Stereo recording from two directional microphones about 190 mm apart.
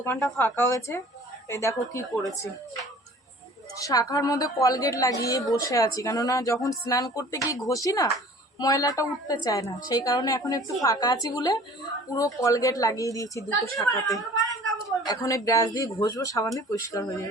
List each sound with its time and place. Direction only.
0.0 s a woman's voice: 10° left (ahead or behind)
3.8 s a woman's voice: 20° left (ahead or behind)